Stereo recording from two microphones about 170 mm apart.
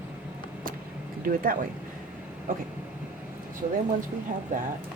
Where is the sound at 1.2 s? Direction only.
55° right (ahead or behind).